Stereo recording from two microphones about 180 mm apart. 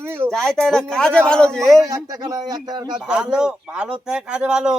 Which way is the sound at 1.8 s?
20° right (ahead or behind).